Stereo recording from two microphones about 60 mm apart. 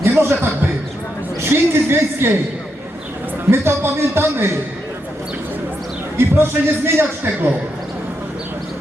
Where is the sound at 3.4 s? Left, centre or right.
Right.